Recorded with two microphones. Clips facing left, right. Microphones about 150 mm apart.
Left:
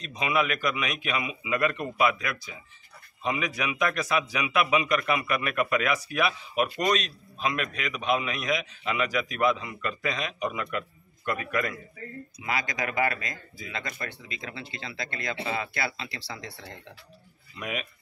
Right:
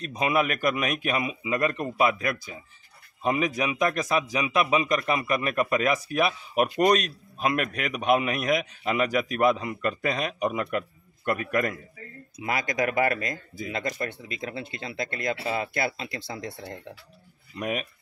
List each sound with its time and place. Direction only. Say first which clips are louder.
0.0 s a man's voice: right 2 dB; 45° right (ahead or behind)